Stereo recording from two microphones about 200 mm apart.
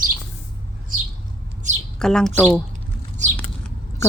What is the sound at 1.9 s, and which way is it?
Speech, 5° left (ahead or behind).